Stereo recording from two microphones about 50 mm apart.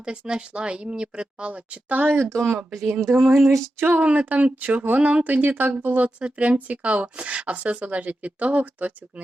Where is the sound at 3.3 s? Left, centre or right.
Centre.